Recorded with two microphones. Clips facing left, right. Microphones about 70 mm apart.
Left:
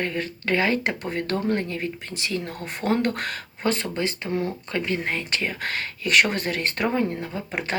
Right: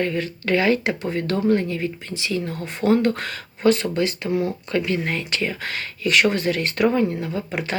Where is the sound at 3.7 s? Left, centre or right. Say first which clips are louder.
Right 5 dB; left.